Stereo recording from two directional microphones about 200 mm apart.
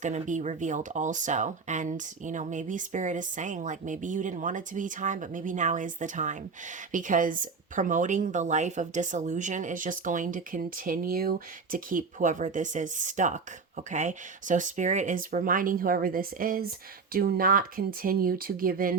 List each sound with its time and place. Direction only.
0.0 s speech: 40° right (ahead or behind)